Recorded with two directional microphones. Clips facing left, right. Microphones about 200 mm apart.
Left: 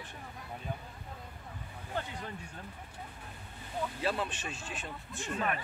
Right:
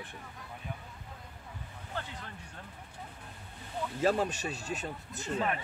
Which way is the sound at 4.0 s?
40° right (ahead or behind).